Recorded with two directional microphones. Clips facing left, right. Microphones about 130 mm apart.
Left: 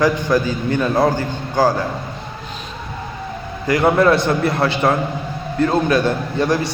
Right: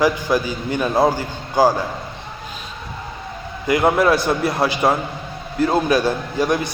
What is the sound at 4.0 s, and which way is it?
Speech, 5° right (ahead or behind).